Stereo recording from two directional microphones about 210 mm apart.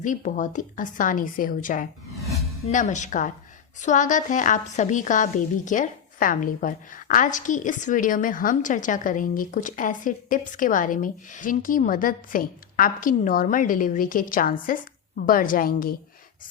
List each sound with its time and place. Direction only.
0.0 s a woman's voice: 35° left (ahead or behind)